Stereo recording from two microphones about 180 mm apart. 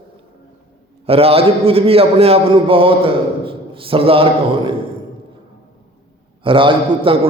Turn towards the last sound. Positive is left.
turn(degrees=-30)  # may be behind; listen again after turning